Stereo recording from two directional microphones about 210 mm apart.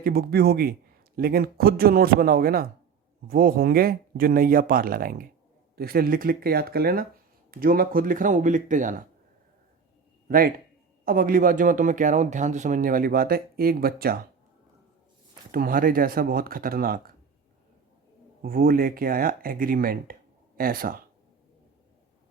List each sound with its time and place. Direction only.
0.0 s speech: 45° right (ahead or behind)
10.2 s a man's voice: 45° right (ahead or behind)
15.5 s speech: 40° right (ahead or behind)
18.4 s speech: 45° right (ahead or behind)